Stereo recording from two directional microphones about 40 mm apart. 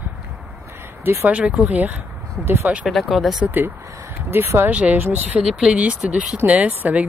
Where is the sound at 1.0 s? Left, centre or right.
Right.